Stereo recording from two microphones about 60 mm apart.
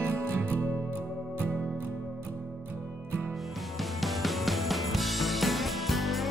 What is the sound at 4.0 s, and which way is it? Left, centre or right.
Music, centre.